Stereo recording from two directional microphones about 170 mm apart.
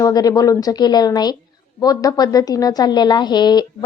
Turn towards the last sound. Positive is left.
turn(degrees=25)  # may be behind; listen again after turning